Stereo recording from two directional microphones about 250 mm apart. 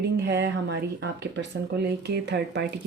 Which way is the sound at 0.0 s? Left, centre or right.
Right.